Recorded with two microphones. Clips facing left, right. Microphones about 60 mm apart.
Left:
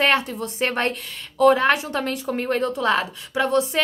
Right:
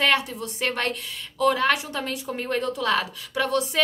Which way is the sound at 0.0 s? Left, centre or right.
Left.